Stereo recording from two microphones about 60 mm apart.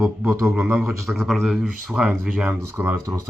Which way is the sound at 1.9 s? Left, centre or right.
Right.